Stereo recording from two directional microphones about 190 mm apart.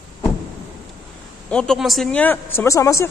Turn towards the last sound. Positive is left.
turn(degrees=15)  # may be behind; listen again after turning